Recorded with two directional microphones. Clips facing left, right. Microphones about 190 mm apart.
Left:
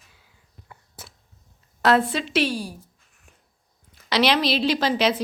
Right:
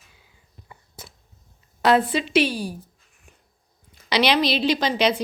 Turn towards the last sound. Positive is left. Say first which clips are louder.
# even
turn(degrees=5)  # may be behind; listen again after turning